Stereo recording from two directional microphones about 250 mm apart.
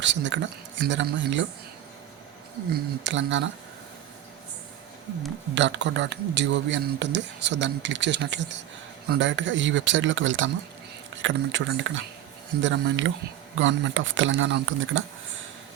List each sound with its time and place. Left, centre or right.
0.0 s speech: right
2.7 s speech: right
5.5 s speech: right